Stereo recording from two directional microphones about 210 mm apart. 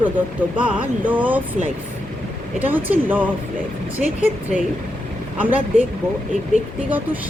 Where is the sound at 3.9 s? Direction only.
35° left (ahead or behind).